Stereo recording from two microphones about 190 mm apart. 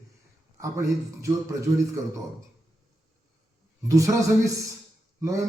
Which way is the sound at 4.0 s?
15° right (ahead or behind).